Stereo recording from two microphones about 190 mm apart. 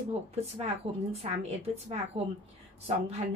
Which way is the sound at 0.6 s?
30° right (ahead or behind).